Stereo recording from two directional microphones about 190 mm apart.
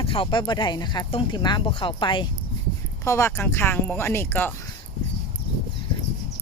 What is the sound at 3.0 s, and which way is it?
Speech, 15° left (ahead or behind).